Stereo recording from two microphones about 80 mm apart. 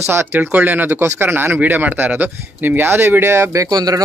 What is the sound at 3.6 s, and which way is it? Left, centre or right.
Speech, right.